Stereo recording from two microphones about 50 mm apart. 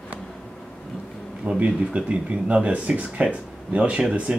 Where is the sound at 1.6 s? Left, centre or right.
Right.